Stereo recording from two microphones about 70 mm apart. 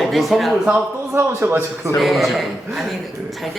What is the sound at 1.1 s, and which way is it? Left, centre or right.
Speech, right.